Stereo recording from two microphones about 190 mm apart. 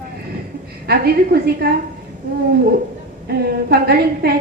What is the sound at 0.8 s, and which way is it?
Speech, 55° right (ahead or behind).